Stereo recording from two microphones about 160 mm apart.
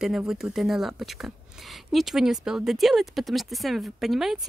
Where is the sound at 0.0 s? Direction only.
5° right (ahead or behind).